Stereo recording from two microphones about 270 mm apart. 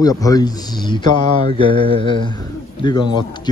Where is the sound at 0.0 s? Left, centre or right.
Centre.